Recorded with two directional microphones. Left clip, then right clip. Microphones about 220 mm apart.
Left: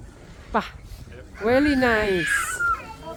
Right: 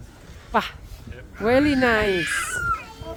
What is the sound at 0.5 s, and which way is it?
Speech, 15° right (ahead or behind).